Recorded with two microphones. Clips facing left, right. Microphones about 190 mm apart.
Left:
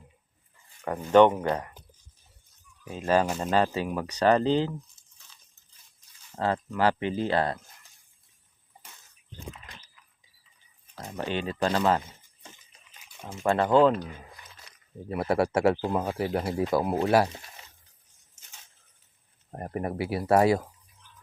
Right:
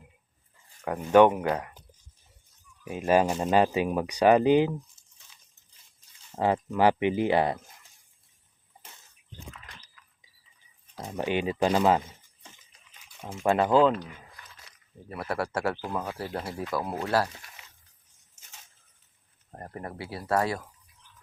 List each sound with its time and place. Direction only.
0.9 s speech: 10° right (ahead or behind)
2.8 s speech: 10° right (ahead or behind)
6.3 s speech: 15° right (ahead or behind)
11.0 s speech: 15° right (ahead or behind)
13.4 s speech: 15° right (ahead or behind)
13.7 s speech: centre (ahead or behind)
13.9 s speech: 35° left (ahead or behind)
15.1 s speech: 20° left (ahead or behind)
19.5 s speech: 15° left (ahead or behind)